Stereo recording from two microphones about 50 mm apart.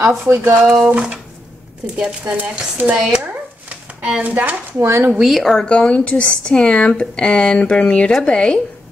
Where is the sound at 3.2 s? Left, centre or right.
Right.